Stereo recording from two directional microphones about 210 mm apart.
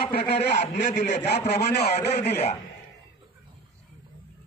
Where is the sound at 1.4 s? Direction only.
50° left (ahead or behind).